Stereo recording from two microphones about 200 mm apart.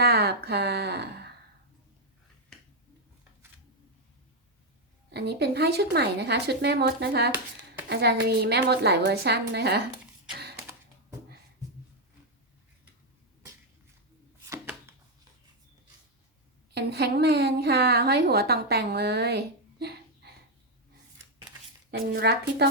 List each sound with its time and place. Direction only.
0.0 s speech: 50° right (ahead or behind)
5.1 s a woman's voice: 55° right (ahead or behind)
14.4 s chopping: 15° right (ahead or behind)
16.7 s a woman's voice: 55° right (ahead or behind)
21.8 s a woman's voice: 55° right (ahead or behind)